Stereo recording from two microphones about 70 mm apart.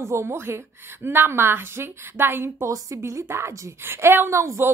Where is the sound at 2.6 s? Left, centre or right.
Right.